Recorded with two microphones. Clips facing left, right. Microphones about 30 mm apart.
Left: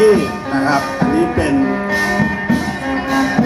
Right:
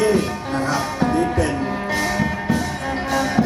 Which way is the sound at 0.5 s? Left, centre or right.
Left.